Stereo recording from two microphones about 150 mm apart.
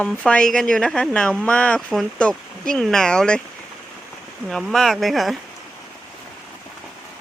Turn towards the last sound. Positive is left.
turn(degrees=0)  # may be behind; listen again after turning